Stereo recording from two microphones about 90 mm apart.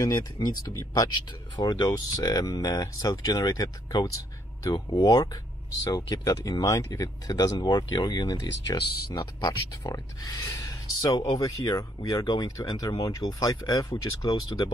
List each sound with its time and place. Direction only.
0.0 s speech: 50° left (ahead or behind)